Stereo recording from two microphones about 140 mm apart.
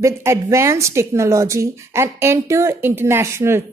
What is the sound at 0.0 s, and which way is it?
A woman's voice, 20° right (ahead or behind).